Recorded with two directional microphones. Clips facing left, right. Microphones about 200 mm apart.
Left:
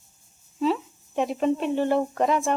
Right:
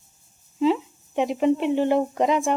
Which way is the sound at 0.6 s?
15° right (ahead or behind).